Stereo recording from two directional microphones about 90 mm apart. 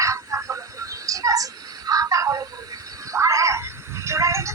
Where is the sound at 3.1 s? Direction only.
35° right (ahead or behind).